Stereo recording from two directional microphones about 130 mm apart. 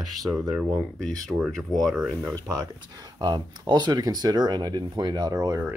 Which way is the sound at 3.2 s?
35° right (ahead or behind).